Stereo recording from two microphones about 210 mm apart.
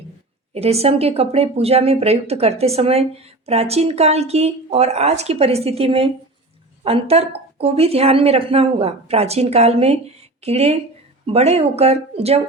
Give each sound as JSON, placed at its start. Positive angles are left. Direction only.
{"t": 0.5, "sound": "speech", "side_deg": -30}